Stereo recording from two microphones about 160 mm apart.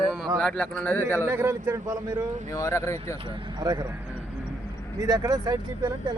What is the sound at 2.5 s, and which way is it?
Speech, 15° left (ahead or behind).